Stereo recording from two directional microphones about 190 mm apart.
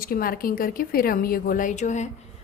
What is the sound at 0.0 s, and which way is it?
A woman's voice, 50° left (ahead or behind).